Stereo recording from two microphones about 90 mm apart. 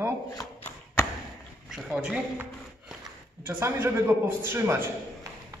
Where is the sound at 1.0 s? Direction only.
30° left (ahead or behind).